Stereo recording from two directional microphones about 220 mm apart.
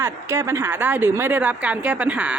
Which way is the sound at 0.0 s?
10° right (ahead or behind).